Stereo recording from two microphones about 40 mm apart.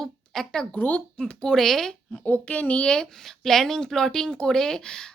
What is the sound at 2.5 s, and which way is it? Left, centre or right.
Speech, left.